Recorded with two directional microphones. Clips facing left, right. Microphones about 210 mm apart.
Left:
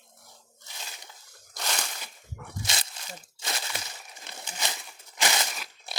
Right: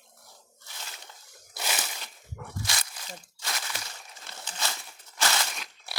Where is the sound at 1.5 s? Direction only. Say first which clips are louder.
Even; 5° right (ahead or behind).